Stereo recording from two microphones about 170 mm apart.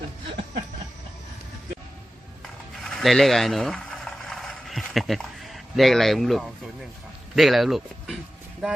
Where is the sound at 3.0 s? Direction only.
Centre (ahead or behind).